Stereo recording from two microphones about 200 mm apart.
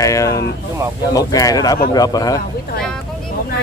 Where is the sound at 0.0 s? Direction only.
15° left (ahead or behind).